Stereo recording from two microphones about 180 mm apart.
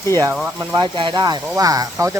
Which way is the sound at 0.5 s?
25° right (ahead or behind).